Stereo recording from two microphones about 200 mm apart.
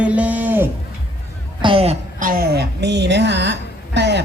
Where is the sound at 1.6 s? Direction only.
30° right (ahead or behind).